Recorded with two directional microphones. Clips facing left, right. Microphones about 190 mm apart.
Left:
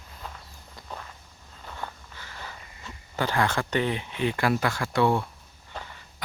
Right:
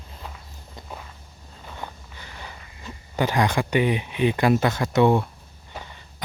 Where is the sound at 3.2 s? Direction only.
15° right (ahead or behind).